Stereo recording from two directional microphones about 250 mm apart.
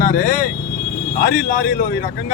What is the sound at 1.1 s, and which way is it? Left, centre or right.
Speech, left.